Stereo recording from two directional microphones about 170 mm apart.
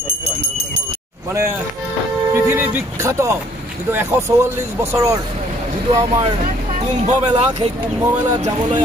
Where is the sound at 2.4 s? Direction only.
15° right (ahead or behind).